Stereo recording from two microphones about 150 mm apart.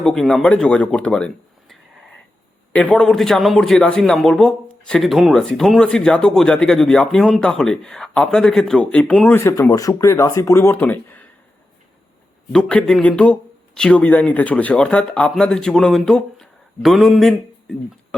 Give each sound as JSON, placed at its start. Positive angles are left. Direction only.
{"t": 0.0, "sound": "a man's voice", "side_deg": 5}
{"t": 12.5, "sound": "a man's voice", "side_deg": 5}